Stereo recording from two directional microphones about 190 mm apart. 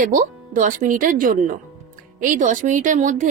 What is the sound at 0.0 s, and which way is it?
Speech, 45° right (ahead or behind).